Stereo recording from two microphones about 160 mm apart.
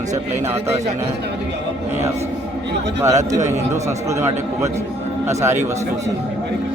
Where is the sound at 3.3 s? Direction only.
45° right (ahead or behind).